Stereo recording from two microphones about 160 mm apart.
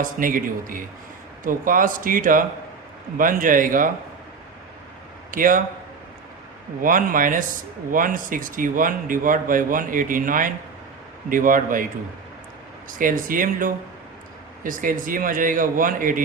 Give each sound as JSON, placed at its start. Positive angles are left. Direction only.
{"t": 0.0, "sound": "a man's voice", "side_deg": -60}
{"t": 5.3, "sound": "a man's voice", "side_deg": -60}
{"t": 6.8, "sound": "a man's voice", "side_deg": -60}
{"t": 13.0, "sound": "a man's voice", "side_deg": -60}